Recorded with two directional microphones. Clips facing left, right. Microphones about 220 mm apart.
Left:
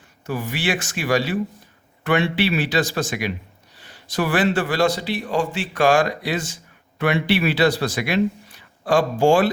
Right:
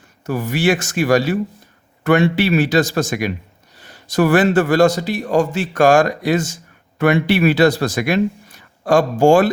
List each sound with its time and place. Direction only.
0.3 s a man's voice: 45° right (ahead or behind)